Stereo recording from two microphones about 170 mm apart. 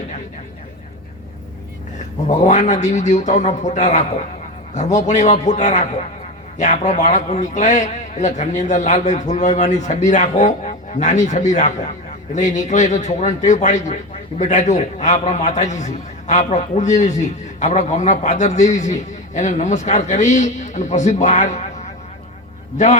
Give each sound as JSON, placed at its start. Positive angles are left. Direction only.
{"t": 2.3, "sound": "a man's voice", "side_deg": 45}